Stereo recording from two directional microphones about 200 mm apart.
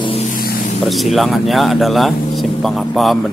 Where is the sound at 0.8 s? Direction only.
Centre (ahead or behind).